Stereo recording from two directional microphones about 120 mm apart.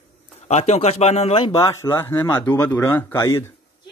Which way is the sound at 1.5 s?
25° left (ahead or behind).